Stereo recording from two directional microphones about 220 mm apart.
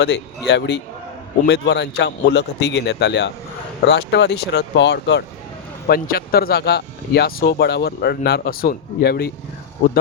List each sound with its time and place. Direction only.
0.0 s speech: 50° left (ahead or behind)